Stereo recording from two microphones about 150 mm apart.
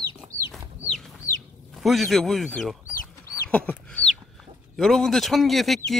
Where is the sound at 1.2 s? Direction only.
20° left (ahead or behind).